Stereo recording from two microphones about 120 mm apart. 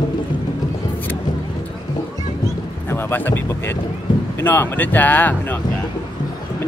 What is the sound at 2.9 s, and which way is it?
Speech, 20° left (ahead or behind).